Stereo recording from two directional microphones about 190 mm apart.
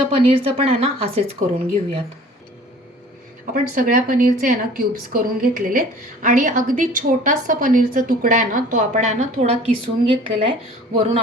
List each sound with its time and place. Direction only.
0.1 s speech: 30° right (ahead or behind)
3.5 s a woman's voice: 45° right (ahead or behind)